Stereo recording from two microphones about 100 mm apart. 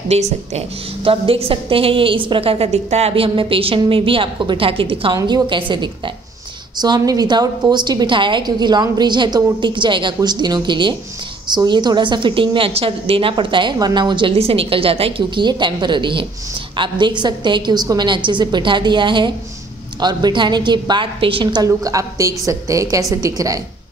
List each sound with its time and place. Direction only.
0.1 s a woman's voice: 90° right; by 5.1 s 65° right (ahead or behind)
5.1 s a woman's voice: 45° right (ahead or behind)
6.8 s a woman's voice: 40° right (ahead or behind)
21.6 s a woman's voice: 35° right (ahead or behind)